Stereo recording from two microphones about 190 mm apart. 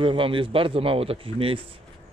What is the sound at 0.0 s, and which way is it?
Speech, 25° right (ahead or behind).